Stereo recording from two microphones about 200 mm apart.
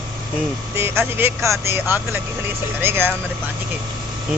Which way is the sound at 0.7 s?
10° right (ahead or behind).